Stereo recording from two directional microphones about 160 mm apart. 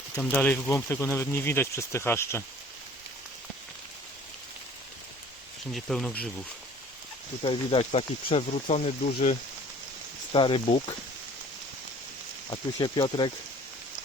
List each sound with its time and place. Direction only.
0.2 s speech: 10° left (ahead or behind)
5.7 s speech: 5° left (ahead or behind)
7.4 s speech: 35° left (ahead or behind)
10.3 s speech: 30° left (ahead or behind)
12.5 s speech: 30° left (ahead or behind)